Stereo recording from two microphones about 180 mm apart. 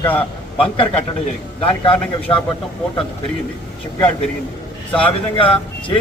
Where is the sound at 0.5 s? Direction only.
30° left (ahead or behind).